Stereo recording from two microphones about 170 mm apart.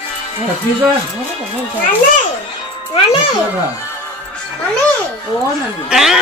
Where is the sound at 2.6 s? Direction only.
30° left (ahead or behind).